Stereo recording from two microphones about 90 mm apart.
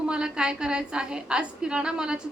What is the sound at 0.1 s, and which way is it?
A woman's voice, 10° right (ahead or behind).